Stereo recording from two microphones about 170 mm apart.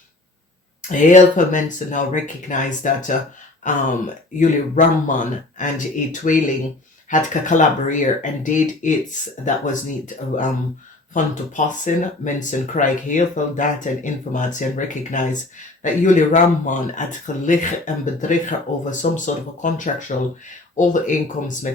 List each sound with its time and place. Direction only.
0.8 s speech: 50° left (ahead or behind)
11.1 s speech: 50° left (ahead or behind)